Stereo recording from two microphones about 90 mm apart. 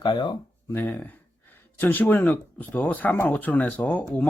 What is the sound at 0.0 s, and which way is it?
Speech, 60° left (ahead or behind).